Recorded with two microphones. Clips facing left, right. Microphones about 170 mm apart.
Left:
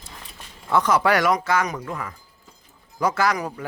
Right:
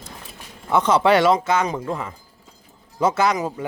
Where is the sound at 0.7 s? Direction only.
25° right (ahead or behind).